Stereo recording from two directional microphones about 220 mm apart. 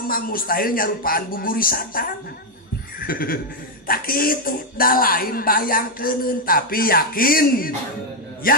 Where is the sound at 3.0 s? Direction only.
40° left (ahead or behind).